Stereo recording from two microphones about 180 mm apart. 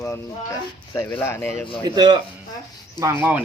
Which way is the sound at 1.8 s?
25° right (ahead or behind).